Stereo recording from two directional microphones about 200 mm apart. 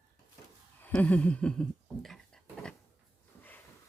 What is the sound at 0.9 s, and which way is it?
Speech, 5° left (ahead or behind).